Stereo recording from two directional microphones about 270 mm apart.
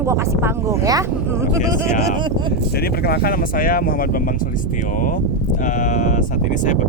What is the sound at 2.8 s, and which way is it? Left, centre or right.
Speech, left.